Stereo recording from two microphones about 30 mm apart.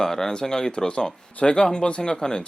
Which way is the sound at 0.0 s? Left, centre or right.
Centre.